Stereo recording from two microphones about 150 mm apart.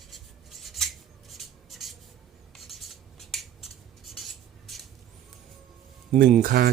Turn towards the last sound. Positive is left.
turn(degrees=-85)